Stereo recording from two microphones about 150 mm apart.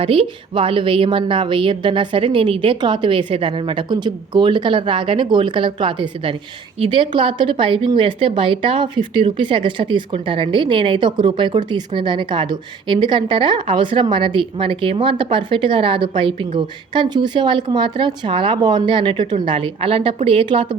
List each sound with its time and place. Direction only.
0.0 s a woman's voice: 35° right (ahead or behind)